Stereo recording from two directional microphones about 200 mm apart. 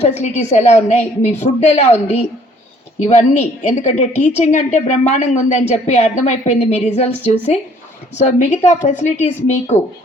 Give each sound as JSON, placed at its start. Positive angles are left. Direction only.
{"t": 0.0, "sound": "a woman's voice", "side_deg": 35}